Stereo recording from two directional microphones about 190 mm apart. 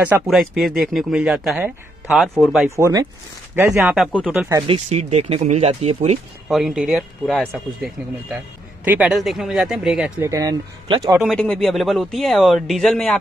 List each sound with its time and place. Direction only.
0.0 s speech: 5° right (ahead or behind)
2.7 s speech: 15° right (ahead or behind)
3.7 s speech: centre (ahead or behind)
4.6 s speech: 35° right (ahead or behind)
6.5 s speech: centre (ahead or behind)
10.2 s speech: 15° right (ahead or behind)
11.2 s speech: 5° left (ahead or behind)